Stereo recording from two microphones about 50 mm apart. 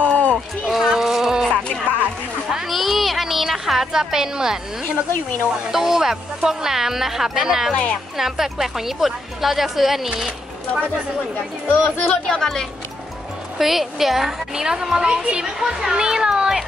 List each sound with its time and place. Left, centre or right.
0.0 s music: left
0.7 s a sound: centre
2.5 s a sound: centre
5.7 s speech: centre
7.7 s speech: left
8.2 s a woman's voice: centre
11.7 s speech: left
12.3 s speech: centre
13.6 s a child's voice: centre